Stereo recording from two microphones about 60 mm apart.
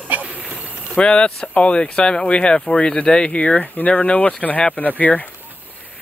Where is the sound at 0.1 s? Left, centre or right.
Right.